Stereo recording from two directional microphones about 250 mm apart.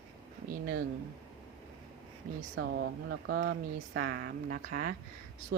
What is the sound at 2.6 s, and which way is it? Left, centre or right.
Speech, right.